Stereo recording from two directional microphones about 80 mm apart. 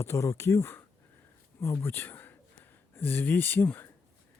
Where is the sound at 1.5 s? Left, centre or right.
Left.